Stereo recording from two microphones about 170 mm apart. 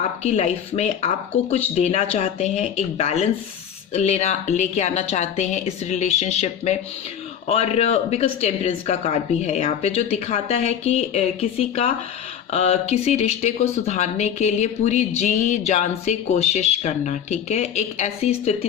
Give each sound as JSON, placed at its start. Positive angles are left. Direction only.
{"t": 0.2, "sound": "speech", "side_deg": 40}